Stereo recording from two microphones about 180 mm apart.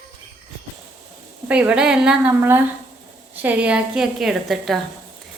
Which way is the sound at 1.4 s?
5° right (ahead or behind).